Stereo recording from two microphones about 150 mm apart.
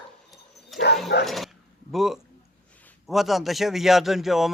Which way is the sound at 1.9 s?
Centre (ahead or behind).